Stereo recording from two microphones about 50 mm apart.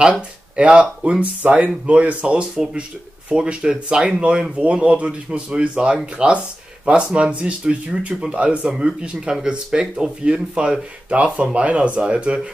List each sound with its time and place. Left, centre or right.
0.6 s speech: right